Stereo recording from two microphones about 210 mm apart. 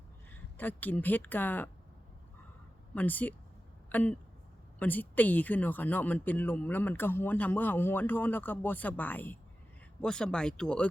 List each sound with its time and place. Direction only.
0.5 s speech: 10° left (ahead or behind)
2.9 s speech: 10° left (ahead or behind)